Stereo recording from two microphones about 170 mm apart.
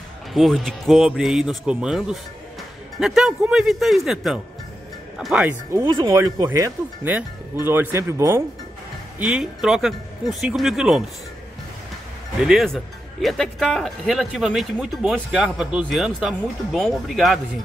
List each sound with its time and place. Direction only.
0.3 s speech: centre (ahead or behind)
5.9 s speech: 25° right (ahead or behind)
9.2 s speech: 5° right (ahead or behind)
12.4 s speech: centre (ahead or behind)